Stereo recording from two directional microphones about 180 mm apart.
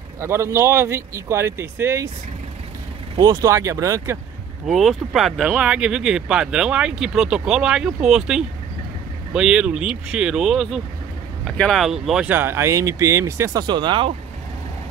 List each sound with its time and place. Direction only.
0.2 s speech: 15° right (ahead or behind)
3.2 s speech: 20° right (ahead or behind)
4.6 s speech: centre (ahead or behind); by 14.1 s 25° right (ahead or behind)